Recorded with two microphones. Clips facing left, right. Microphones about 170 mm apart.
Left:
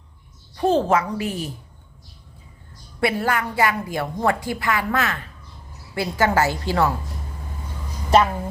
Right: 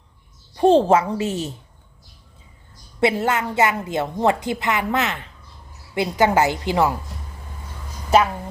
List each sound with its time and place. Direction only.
0.5 s a woman's voice: 30° right (ahead or behind)
3.0 s a woman's voice: 20° right (ahead or behind)